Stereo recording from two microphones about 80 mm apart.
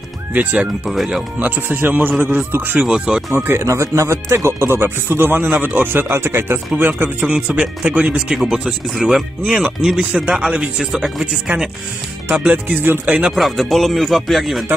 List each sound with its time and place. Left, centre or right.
0.3 s speech: right
0.8 s speech: centre
1.4 s speech: right
2.9 s speech: centre
3.3 s speech: right; by 8.4 s centre
8.4 s speech: centre; by 13.1 s right
13.3 s speech: centre